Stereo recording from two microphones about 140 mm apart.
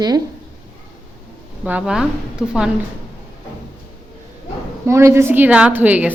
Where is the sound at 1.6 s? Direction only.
10° right (ahead or behind).